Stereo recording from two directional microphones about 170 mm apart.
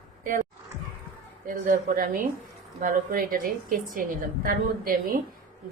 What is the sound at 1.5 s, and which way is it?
Speech, 50° right (ahead or behind).